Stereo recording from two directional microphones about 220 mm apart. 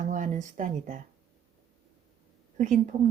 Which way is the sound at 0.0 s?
35° right (ahead or behind).